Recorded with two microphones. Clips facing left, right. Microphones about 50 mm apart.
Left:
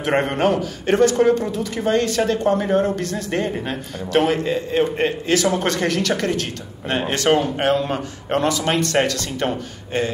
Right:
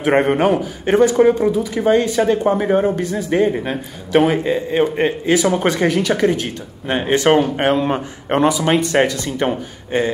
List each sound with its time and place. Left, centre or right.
0.0 s speech: centre